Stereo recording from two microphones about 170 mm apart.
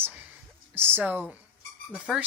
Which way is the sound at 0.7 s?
15° right (ahead or behind).